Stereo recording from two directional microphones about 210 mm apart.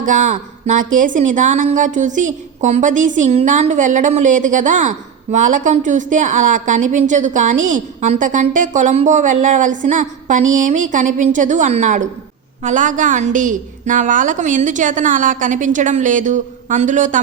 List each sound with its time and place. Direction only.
0.0 s speech: 35° right (ahead or behind)